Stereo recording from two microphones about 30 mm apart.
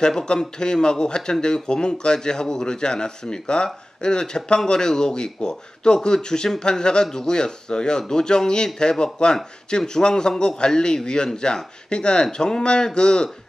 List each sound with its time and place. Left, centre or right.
0.0 s speech: left